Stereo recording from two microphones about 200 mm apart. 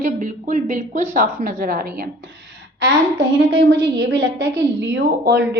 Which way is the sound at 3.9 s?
65° right (ahead or behind).